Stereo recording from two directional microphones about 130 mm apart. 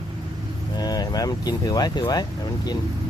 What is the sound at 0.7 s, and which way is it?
Speech, 30° left (ahead or behind).